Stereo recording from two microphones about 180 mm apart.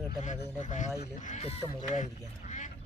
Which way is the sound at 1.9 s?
40° left (ahead or behind).